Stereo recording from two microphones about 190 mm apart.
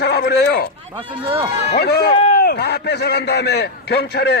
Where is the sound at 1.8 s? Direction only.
60° left (ahead or behind).